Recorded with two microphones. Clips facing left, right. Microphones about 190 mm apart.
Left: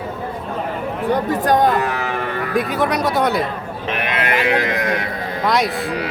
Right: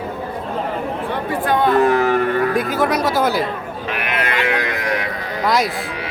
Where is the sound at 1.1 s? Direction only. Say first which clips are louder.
Left 4 dB; 40° left (ahead or behind).